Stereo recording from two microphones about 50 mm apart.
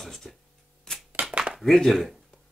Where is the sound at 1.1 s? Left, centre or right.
Right.